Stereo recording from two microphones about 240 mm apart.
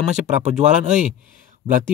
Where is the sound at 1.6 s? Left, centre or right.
Right.